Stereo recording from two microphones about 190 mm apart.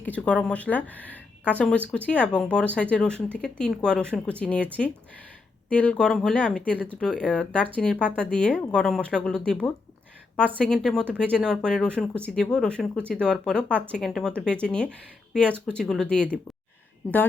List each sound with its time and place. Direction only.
0.0 s speech: 5° left (ahead or behind)